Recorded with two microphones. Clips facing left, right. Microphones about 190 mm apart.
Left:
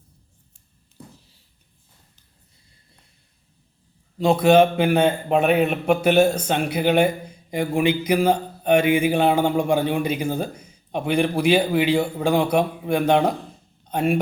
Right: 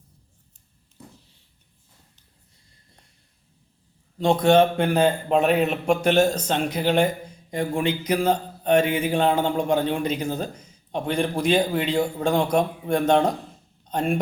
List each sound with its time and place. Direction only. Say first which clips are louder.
4.2 s a man's voice: left 2 dB; 5° left (ahead or behind)